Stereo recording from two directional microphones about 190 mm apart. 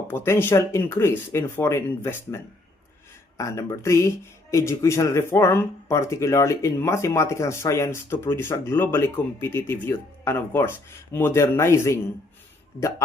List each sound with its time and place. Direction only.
0.1 s speech: 10° left (ahead or behind)